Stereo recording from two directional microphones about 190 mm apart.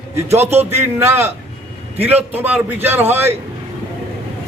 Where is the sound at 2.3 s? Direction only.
10° right (ahead or behind).